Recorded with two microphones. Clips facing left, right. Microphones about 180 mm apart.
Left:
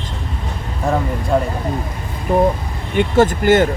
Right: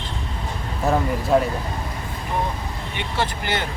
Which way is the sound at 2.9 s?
50° left (ahead or behind).